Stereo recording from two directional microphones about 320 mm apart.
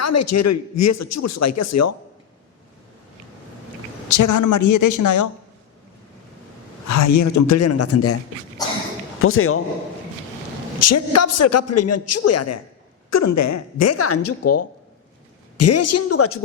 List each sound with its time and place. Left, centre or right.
0.0 s a man's voice: left
4.1 s speech: left
6.8 s a man's voice: left
9.2 s a man's voice: left
10.8 s a man's voice: left